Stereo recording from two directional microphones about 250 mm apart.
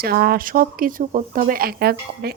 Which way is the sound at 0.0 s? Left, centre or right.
Right.